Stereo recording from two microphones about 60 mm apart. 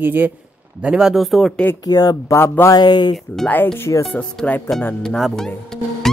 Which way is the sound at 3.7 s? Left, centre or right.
Left.